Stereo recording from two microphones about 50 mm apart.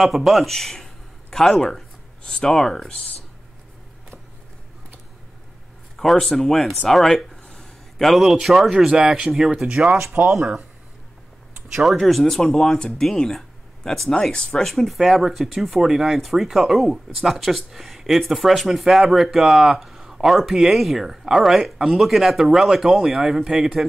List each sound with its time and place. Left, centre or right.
0.0 s speech: centre
0.5 s a sound: centre
2.2 s speech: centre
2.5 s speech: centre
5.9 s speech: centre
7.5 s a sound: centre
8.8 s speech: centre
11.9 s speech: centre